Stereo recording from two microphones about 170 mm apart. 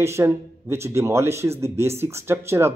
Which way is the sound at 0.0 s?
15° right (ahead or behind).